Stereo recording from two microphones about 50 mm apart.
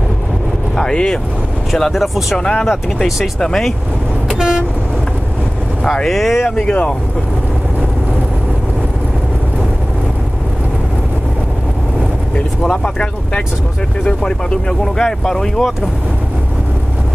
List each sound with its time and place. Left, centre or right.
0.7 s speech: centre
1.7 s speech: centre
2.3 s speech: centre
4.3 s vehicle: centre
6.0 s speech: centre
6.6 s speech: left
12.4 s speech: centre